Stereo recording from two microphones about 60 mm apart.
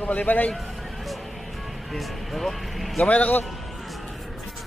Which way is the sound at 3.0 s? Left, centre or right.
Left.